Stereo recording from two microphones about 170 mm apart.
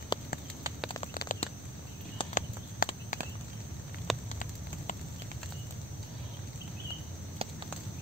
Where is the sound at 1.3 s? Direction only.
50° left (ahead or behind).